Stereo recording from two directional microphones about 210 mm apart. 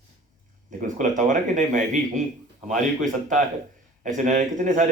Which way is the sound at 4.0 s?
35° right (ahead or behind).